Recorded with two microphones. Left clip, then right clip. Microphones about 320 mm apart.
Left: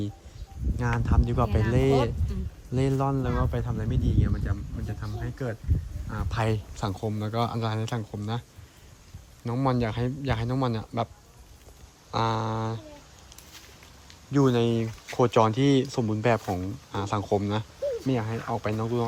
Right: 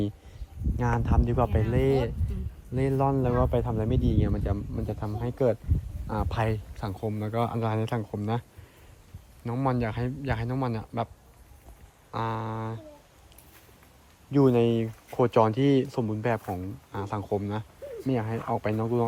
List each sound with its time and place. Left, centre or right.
0.8 s speech: centre
12.1 s speech: centre
14.3 s speech: centre